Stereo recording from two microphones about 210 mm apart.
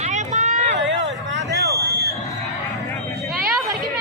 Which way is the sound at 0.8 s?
60° right (ahead or behind).